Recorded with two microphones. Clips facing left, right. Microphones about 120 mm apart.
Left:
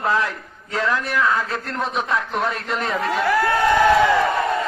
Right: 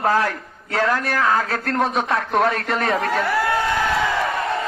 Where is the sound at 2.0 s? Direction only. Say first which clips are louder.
Right 4 dB; 65° right (ahead or behind).